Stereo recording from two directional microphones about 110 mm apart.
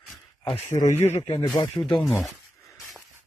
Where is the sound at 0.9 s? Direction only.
20° left (ahead or behind).